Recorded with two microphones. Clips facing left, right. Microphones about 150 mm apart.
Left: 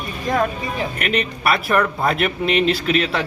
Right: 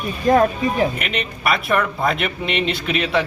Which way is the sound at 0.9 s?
45° left (ahead or behind).